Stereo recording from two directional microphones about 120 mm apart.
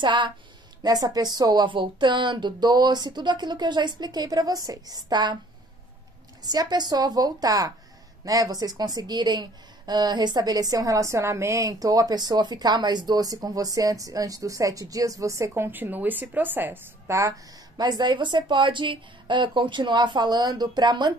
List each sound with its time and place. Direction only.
0.0 s a woman's voice: 40° right (ahead or behind)
6.4 s a woman's voice: 35° right (ahead or behind)